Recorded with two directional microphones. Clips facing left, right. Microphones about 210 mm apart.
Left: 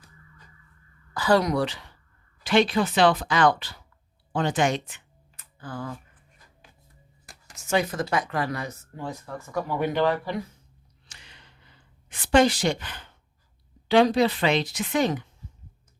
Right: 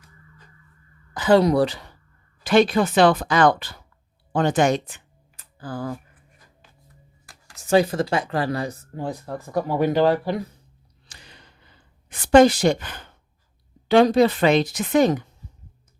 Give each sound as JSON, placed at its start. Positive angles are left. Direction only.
{"t": 1.1, "sound": "speech", "side_deg": -20}
{"t": 5.4, "sound": "a sound", "side_deg": -35}
{"t": 7.6, "sound": "speech", "side_deg": -35}
{"t": 11.1, "sound": "sigh", "side_deg": -35}
{"t": 12.0, "sound": "speech", "side_deg": -40}